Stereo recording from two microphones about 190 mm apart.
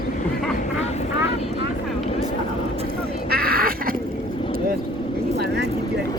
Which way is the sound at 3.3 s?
50° right (ahead or behind).